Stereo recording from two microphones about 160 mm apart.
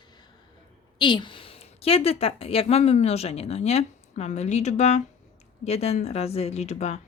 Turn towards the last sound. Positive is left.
turn(degrees=45)  # may be behind; listen again after turning